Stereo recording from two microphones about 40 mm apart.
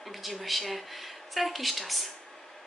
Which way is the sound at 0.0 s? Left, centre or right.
Centre.